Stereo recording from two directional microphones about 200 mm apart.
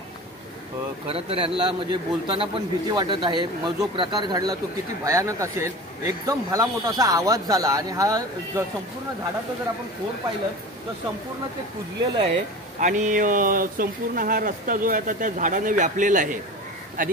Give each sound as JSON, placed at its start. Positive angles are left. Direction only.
{"t": 1.0, "sound": "a man's voice", "side_deg": -30}
{"t": 12.8, "sound": "speech", "side_deg": -40}